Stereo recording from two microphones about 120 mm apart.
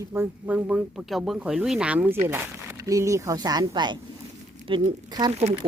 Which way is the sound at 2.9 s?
25° right (ahead or behind).